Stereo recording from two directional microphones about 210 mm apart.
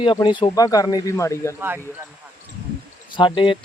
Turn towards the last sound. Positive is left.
turn(degrees=25)  # may be behind; listen again after turning